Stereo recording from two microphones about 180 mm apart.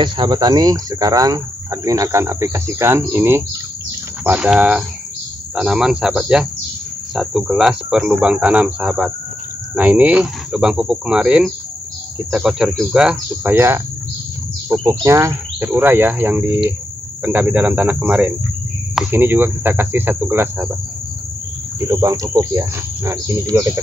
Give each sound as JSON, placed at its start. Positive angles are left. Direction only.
{"t": 0.0, "sound": "speech", "side_deg": -25}
{"t": 14.9, "sound": "speech", "side_deg": -15}
{"t": 21.7, "sound": "speech", "side_deg": -20}